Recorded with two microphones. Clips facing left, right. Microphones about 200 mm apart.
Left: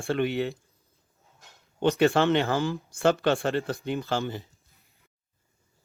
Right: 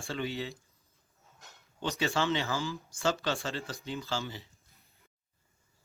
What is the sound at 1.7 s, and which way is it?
Speech, 60° left (ahead or behind).